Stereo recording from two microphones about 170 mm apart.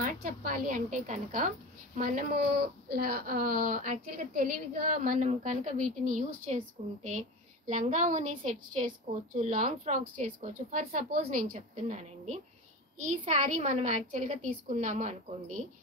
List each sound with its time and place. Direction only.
0.0 s a woman's voice: 55° right (ahead or behind); by 8.9 s 40° right (ahead or behind)
9.4 s a woman's voice: 50° right (ahead or behind)